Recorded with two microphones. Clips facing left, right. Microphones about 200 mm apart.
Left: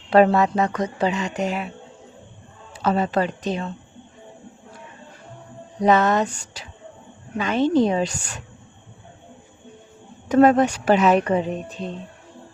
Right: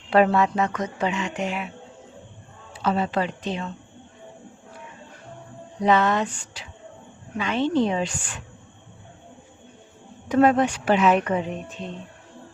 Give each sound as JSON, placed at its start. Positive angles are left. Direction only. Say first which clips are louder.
{"t": 0.1, "sound": "speech", "louder": "left 3 dB", "side_deg": 40}
{"t": 2.7, "sound": "speech", "louder": "left 3 dB", "side_deg": 45}
{"t": 5.8, "sound": "speech", "louder": "left 3 dB", "side_deg": 45}
{"t": 10.2, "sound": "speech", "louder": "left 3 dB", "side_deg": 45}